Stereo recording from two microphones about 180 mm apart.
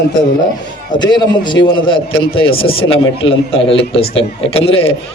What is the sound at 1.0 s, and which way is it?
A man's voice, 25° left (ahead or behind).